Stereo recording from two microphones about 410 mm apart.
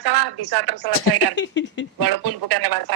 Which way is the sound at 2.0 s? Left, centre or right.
Right.